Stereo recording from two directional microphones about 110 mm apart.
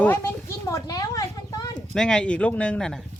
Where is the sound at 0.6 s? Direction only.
30° left (ahead or behind).